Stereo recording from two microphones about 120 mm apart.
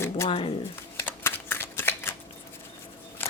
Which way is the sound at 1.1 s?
20° left (ahead or behind).